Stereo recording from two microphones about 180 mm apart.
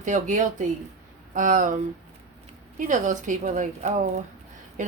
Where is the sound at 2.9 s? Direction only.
45° right (ahead or behind).